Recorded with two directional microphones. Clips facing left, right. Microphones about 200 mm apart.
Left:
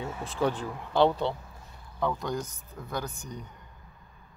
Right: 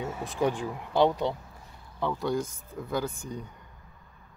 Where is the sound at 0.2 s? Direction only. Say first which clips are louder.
Right 1 dB; 15° right (ahead or behind).